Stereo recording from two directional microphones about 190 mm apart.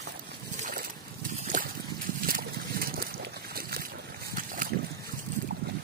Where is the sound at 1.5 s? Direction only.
45° right (ahead or behind).